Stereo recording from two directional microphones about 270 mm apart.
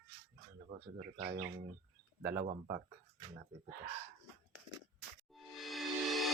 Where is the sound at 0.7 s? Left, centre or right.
Right.